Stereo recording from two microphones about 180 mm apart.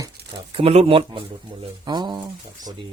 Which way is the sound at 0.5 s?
35° right (ahead or behind).